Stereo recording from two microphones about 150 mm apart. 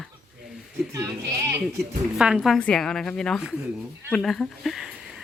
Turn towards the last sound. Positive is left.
turn(degrees=-5)  # may be behind; listen again after turning